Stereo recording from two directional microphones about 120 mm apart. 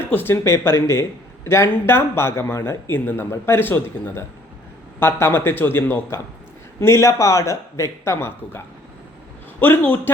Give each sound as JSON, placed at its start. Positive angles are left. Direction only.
{"t": 0.0, "sound": "speech", "side_deg": 15}